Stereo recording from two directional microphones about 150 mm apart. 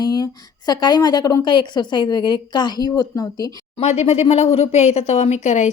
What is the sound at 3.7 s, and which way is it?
Speech, 45° left (ahead or behind).